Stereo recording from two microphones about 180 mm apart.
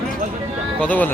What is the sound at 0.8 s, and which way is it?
Speech, 10° left (ahead or behind).